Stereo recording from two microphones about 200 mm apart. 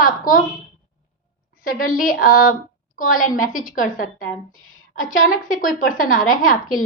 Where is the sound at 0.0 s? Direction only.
45° left (ahead or behind).